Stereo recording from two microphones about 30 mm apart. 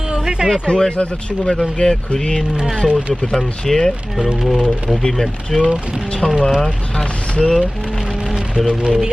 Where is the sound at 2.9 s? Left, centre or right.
Right.